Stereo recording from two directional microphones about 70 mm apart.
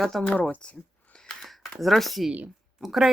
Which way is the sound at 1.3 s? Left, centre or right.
Centre.